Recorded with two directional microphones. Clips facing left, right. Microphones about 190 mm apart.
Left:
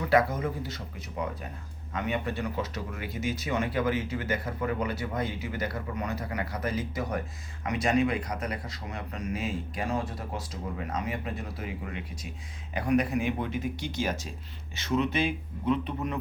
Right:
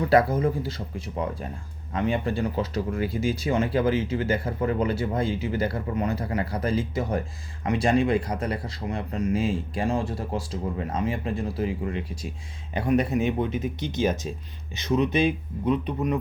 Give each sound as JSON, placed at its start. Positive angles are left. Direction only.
{"t": 0.1, "sound": "speech", "side_deg": -35}